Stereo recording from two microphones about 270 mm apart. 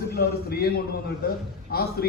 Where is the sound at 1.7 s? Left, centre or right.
Left.